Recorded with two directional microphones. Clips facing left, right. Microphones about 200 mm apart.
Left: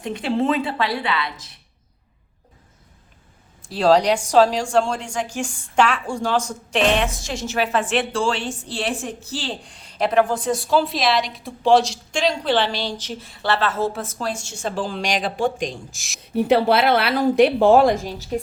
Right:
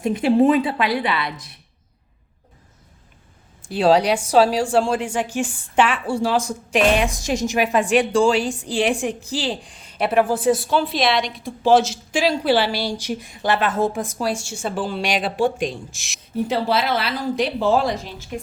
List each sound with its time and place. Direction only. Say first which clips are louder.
0.1 s speech: right 5 dB; 20° right (ahead or behind)
3.6 s a woman's voice: even; 5° right (ahead or behind)
9.6 s a woman's voice: even; 5° right (ahead or behind)
16.3 s speech: left 4 dB; 65° left (ahead or behind); by 18.3 s 40° left (ahead or behind)